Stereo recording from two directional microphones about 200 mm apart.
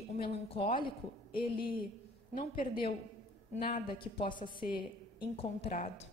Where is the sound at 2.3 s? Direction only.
45° left (ahead or behind).